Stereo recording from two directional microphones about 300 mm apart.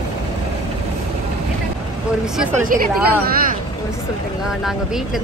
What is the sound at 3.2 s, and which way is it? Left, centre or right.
Speech, right.